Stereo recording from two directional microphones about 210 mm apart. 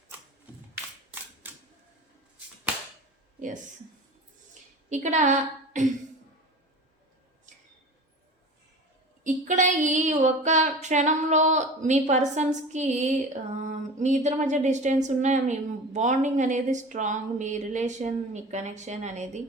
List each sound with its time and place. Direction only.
1.4 s camera: 10° right (ahead or behind)
4.9 s a woman's voice: 35° right (ahead or behind)
9.2 s a woman's voice: 35° right (ahead or behind)